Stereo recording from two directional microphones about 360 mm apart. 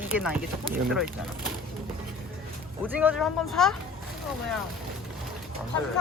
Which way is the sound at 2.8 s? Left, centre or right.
Centre.